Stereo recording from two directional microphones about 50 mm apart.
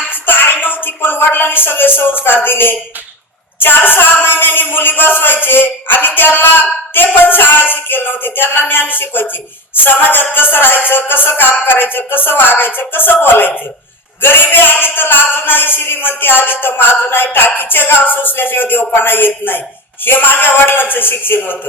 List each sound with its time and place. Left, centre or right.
0.1 s a woman's voice: left
9.7 s a capella: left
10.3 s speech: left